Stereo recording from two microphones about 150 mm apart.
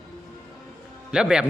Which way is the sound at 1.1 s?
5° right (ahead or behind).